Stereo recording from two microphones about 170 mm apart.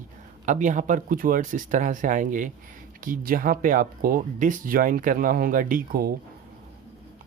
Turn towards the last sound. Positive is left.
turn(degrees=-60)  # may be behind; listen again after turning